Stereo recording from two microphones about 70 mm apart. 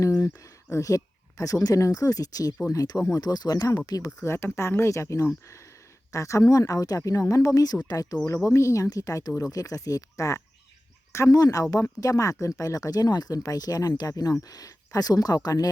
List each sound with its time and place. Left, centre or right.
0.0 s a sound: left
0.7 s speech: left
4.2 s speech: left
8.4 s speech: left
11.3 s speech: left